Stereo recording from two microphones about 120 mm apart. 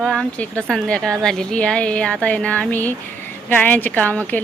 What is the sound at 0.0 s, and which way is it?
A woman's voice, 10° left (ahead or behind).